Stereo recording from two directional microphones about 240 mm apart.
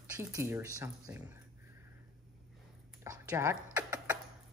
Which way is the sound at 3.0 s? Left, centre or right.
Centre.